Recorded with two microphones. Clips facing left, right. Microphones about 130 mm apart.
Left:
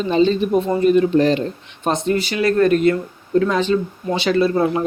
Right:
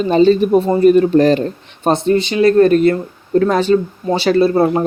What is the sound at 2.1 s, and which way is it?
Speech, 25° right (ahead or behind).